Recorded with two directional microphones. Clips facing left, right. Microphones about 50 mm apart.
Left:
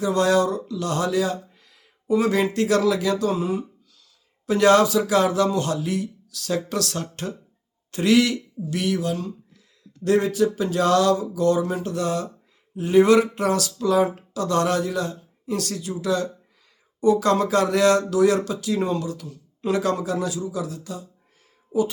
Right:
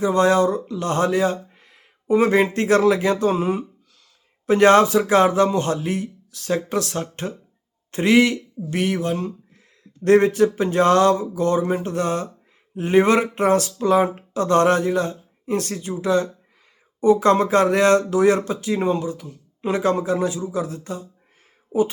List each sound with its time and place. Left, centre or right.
0.0 s speech: right